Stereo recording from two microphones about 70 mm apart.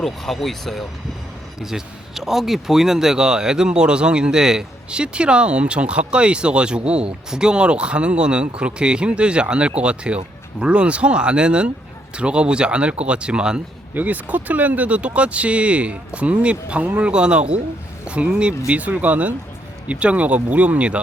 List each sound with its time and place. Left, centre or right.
0.0 s speech: centre
13.9 s speech: right